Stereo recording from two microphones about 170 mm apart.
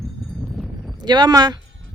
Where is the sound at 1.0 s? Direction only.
25° right (ahead or behind).